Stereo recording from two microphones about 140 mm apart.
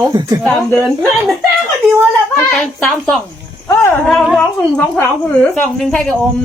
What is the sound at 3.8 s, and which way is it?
Speech, 10° left (ahead or behind).